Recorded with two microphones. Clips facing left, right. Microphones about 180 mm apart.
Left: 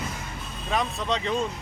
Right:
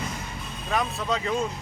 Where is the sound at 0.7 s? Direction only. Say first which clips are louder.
Even; centre (ahead or behind).